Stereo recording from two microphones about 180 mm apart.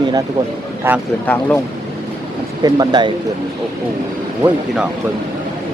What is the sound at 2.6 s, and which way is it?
Speech, 25° right (ahead or behind).